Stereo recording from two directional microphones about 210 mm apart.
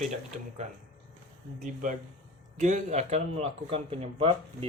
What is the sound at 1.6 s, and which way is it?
Speech, 40° right (ahead or behind).